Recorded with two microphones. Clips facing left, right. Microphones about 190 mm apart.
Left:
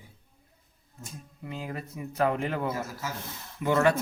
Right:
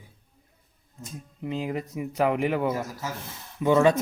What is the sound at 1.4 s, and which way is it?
Speech, 20° right (ahead or behind).